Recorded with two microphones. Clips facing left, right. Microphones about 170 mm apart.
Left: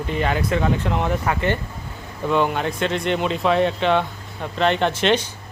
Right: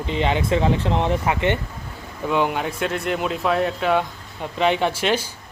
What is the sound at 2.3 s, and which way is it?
Speech, 10° right (ahead or behind).